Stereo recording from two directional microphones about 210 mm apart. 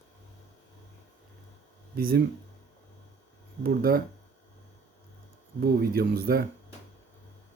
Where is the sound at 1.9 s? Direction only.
45° right (ahead or behind).